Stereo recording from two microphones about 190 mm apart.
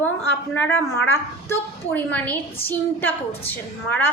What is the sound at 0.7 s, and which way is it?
Speech, 90° left.